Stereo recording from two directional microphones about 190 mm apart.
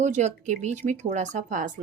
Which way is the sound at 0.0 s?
40° right (ahead or behind).